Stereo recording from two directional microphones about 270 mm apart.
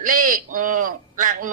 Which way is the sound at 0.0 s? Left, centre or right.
Right.